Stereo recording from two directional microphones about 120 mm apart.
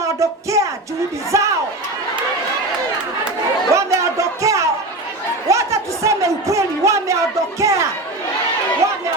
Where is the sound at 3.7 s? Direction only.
25° right (ahead or behind).